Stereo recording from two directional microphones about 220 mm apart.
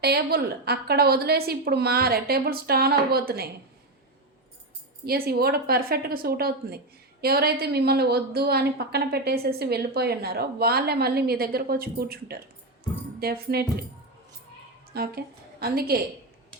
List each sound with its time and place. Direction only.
0.0 s a woman's voice: 45° right (ahead or behind)
5.0 s a woman's voice: 45° right (ahead or behind)
14.9 s a woman's voice: 45° right (ahead or behind)